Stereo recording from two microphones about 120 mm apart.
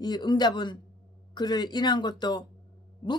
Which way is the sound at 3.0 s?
35° left (ahead or behind).